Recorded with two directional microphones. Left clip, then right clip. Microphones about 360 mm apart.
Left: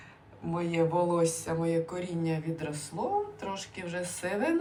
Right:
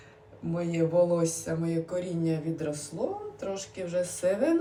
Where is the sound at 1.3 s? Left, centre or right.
Left.